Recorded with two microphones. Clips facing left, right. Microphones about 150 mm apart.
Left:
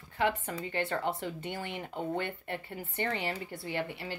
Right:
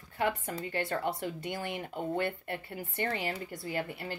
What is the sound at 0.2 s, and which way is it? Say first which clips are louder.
Speech: left 1 dB; 45° right (ahead or behind).